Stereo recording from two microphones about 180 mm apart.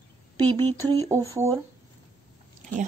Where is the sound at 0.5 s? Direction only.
25° right (ahead or behind).